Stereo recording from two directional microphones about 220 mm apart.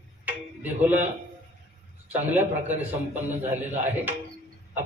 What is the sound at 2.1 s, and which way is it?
A man's voice, 10° right (ahead or behind).